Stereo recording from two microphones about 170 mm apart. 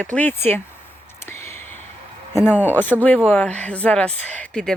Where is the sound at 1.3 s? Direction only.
15° left (ahead or behind).